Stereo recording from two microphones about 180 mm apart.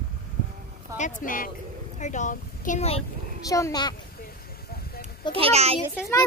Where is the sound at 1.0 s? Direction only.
45° left (ahead or behind).